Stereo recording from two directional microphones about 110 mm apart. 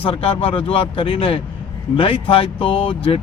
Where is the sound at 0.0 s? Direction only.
55° left (ahead or behind).